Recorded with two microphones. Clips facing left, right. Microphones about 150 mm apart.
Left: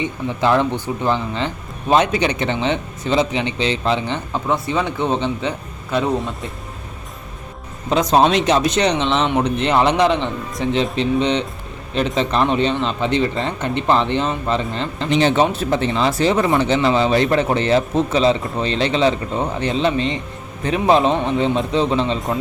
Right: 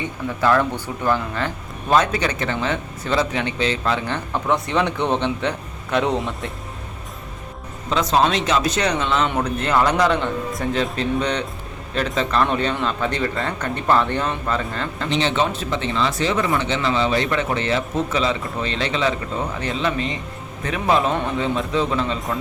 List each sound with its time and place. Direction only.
0.0 s speech: 20° left (ahead or behind)
4.7 s speech: 5° left (ahead or behind)
5.9 s speech: centre (ahead or behind)
8.2 s speech: 30° left (ahead or behind)
11.2 s speech: 25° left (ahead or behind)
15.2 s speech: 45° left (ahead or behind); by 22.4 s 30° left (ahead or behind)